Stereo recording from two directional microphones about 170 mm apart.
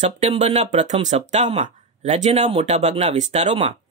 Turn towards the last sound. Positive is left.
turn(degrees=-40)  # may be behind; listen again after turning